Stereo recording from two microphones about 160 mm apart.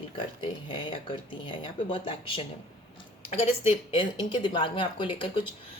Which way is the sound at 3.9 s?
30° left (ahead or behind).